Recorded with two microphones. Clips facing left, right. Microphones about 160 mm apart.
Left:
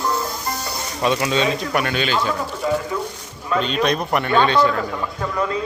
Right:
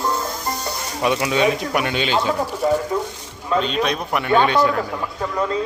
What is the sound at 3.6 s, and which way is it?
Speech, centre (ahead or behind).